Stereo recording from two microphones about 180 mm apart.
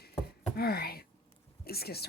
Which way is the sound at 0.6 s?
60° left (ahead or behind).